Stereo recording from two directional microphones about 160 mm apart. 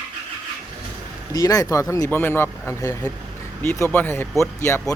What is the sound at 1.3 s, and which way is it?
Speech, 20° left (ahead or behind).